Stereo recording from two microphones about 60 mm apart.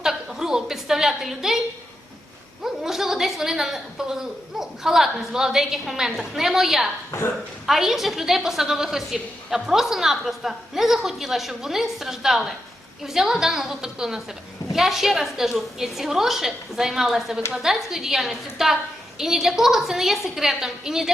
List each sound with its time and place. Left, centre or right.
0.0 s a sound: centre
2.6 s a woman's voice: centre
7.1 s speech: left
7.7 s a woman's voice: centre